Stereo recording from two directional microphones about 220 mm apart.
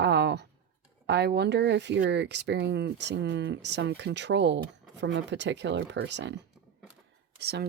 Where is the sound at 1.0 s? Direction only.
50° right (ahead or behind).